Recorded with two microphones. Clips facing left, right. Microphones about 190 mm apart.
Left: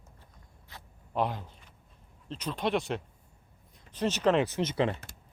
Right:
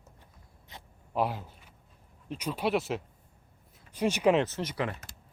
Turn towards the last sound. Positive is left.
turn(degrees=25)  # may be behind; listen again after turning